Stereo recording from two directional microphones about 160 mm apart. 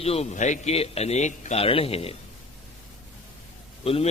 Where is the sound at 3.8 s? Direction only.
35° left (ahead or behind).